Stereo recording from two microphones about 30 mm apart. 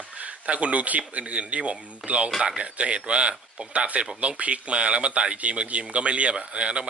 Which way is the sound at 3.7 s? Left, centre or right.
Right.